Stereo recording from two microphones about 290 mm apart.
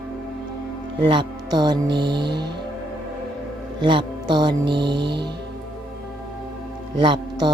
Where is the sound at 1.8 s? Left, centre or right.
Right.